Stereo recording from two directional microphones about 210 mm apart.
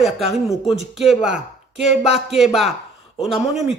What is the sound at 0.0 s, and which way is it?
A man's voice, centre (ahead or behind).